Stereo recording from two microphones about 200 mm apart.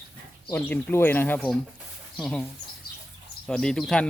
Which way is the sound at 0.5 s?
10° left (ahead or behind).